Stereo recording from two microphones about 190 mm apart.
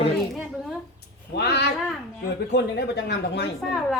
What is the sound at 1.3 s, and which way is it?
Speech, 60° left (ahead or behind).